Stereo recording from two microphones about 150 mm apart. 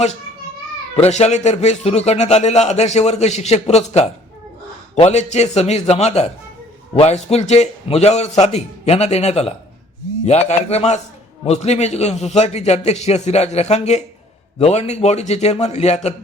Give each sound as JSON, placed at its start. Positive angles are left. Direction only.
{"t": 1.0, "sound": "a man's voice", "side_deg": 50}